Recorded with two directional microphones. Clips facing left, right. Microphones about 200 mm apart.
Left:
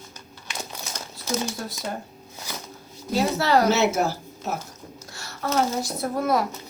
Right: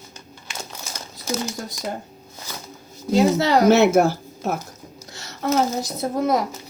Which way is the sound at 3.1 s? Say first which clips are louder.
Right 4 dB; 20° right (ahead or behind).